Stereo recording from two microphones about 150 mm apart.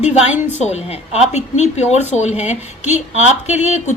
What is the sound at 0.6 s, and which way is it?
A woman's voice, 45° left (ahead or behind).